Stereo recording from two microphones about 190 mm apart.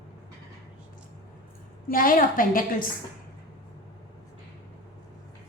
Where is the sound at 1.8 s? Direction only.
50° left (ahead or behind).